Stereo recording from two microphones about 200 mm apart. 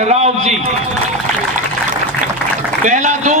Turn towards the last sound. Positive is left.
turn(degrees=-35)  # may be behind; listen again after turning